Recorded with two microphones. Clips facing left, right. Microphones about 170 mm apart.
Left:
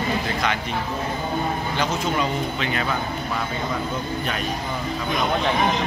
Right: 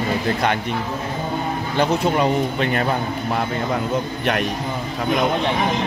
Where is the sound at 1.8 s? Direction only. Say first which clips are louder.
Right 7 dB; 55° right (ahead or behind).